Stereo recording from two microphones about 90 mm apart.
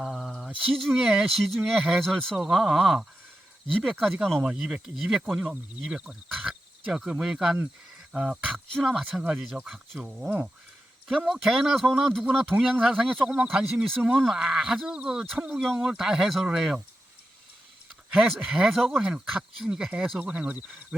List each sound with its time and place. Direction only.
0.0 s a sound: centre (ahead or behind)
0.8 s speech: centre (ahead or behind)
3.7 s speech: 10° left (ahead or behind)
4.4 s speech: 10° right (ahead or behind)
8.5 s speech: centre (ahead or behind)
11.3 s speech: centre (ahead or behind)
13.1 s speech: 5° left (ahead or behind)
13.3 s speech: 10° right (ahead or behind)
15.4 s speech: centre (ahead or behind)
18.2 s speech: 5° right (ahead or behind)